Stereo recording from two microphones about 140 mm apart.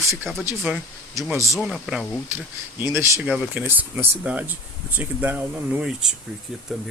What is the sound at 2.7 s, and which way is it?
Speech, 15° right (ahead or behind).